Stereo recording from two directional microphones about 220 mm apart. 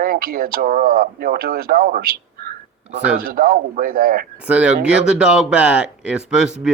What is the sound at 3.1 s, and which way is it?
Speech, 40° right (ahead or behind).